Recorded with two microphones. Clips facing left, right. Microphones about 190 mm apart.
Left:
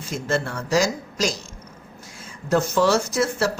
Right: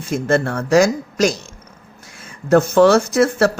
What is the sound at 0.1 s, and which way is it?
Speech, 55° right (ahead or behind).